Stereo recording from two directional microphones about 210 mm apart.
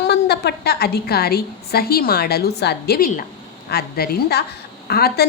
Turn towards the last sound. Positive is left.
turn(degrees=50)  # may be behind; listen again after turning